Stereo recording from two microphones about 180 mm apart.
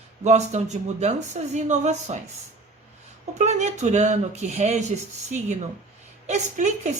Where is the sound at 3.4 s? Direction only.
40° right (ahead or behind).